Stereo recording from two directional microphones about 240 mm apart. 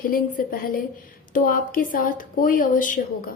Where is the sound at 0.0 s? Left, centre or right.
Left.